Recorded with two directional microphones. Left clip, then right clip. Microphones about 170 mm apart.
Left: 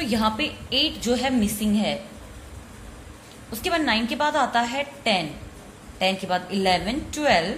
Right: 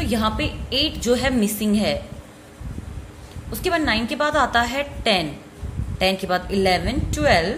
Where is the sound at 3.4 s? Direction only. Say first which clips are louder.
Right 2 dB; 15° right (ahead or behind).